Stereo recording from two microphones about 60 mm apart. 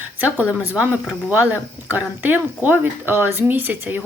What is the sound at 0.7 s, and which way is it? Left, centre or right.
A woman's voice, centre.